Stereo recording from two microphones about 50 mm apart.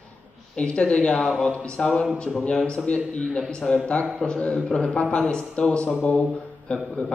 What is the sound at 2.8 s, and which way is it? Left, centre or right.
Speech, centre.